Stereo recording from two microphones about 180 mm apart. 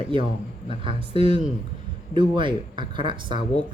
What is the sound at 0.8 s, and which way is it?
Speech, 30° right (ahead or behind).